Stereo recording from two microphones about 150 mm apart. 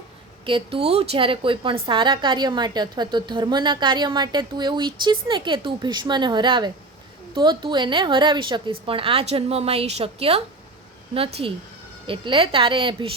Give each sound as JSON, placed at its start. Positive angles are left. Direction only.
{"t": 0.4, "sound": "a woman's voice", "side_deg": -35}
{"t": 12.0, "sound": "a woman's voice", "side_deg": -35}